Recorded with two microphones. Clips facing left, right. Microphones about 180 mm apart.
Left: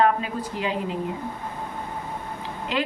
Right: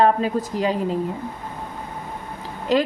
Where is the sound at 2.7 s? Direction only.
40° right (ahead or behind).